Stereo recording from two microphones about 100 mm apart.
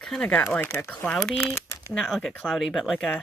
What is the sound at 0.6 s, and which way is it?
Speech, 20° left (ahead or behind).